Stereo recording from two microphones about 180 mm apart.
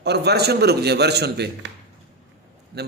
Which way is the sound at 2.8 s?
65° right (ahead or behind).